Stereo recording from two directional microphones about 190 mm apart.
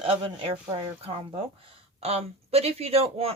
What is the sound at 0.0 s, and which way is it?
Speech, 25° right (ahead or behind).